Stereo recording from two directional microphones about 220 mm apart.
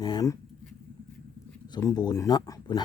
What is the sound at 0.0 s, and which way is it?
Speech, 20° left (ahead or behind).